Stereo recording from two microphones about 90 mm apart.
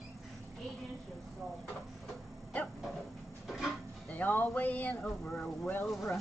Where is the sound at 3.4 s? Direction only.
Centre (ahead or behind).